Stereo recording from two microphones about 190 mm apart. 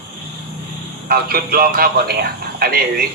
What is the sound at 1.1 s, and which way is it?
A man's voice, 50° right (ahead or behind).